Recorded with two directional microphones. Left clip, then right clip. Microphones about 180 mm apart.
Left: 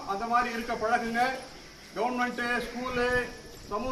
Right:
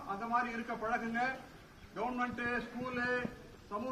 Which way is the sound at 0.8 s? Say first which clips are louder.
Left 9 dB; centre (ahead or behind).